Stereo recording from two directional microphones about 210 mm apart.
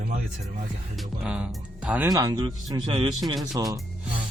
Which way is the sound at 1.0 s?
5° right (ahead or behind).